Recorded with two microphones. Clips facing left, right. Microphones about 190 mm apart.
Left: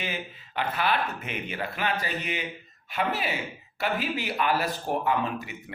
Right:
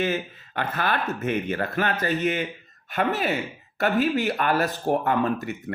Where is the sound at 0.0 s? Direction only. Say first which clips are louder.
Right 9 dB; 50° right (ahead or behind).